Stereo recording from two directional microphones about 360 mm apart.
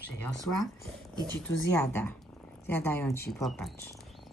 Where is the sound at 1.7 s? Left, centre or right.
Centre.